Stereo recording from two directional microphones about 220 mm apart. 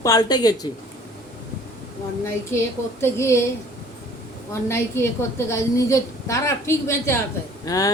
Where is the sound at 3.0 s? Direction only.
10° left (ahead or behind).